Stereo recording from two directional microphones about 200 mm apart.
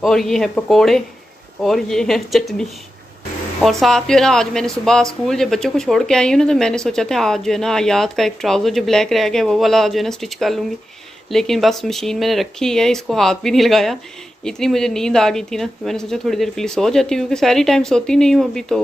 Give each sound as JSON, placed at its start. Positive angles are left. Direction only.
{"t": 0.0, "sound": "speech", "side_deg": 0}
{"t": 3.6, "sound": "speech", "side_deg": 0}